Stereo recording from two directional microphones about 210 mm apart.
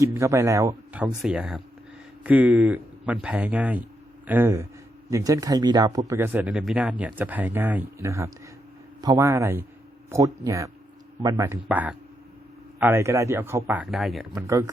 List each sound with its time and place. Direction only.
0.0 s speech: 15° right (ahead or behind)
14.4 s speech: 15° right (ahead or behind)